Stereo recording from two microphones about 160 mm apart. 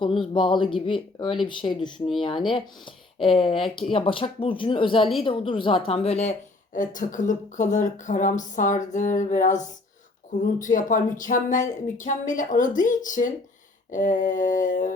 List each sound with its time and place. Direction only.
0.0 s speech: 30° left (ahead or behind)
6.7 s a woman's voice: 55° left (ahead or behind)